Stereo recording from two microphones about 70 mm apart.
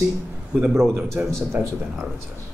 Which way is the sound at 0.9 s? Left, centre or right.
Right.